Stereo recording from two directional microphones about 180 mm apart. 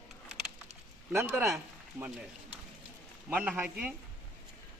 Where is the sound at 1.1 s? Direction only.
15° right (ahead or behind).